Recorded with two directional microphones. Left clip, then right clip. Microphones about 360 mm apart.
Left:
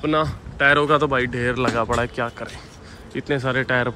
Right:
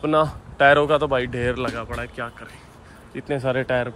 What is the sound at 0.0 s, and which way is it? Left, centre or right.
Speech, centre.